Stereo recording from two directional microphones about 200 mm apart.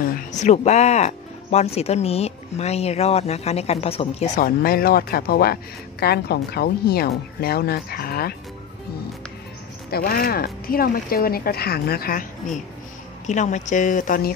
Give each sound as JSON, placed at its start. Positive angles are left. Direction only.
{"t": 0.0, "sound": "speech", "side_deg": 40}
{"t": 4.4, "sound": "a man's voice", "side_deg": 45}
{"t": 9.8, "sound": "a man's voice", "side_deg": 50}